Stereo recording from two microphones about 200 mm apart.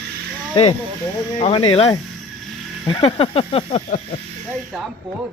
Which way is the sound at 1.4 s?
25° left (ahead or behind).